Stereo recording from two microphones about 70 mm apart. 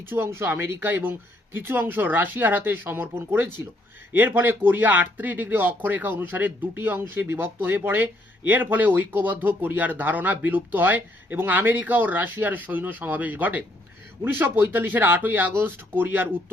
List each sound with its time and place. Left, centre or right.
0.1 s speech: right